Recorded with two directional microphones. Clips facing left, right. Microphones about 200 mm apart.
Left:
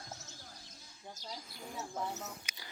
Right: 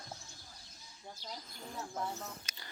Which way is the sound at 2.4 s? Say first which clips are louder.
Left 1 dB; 10° left (ahead or behind).